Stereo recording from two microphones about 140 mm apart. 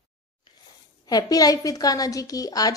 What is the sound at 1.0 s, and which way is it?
Speech, 30° left (ahead or behind).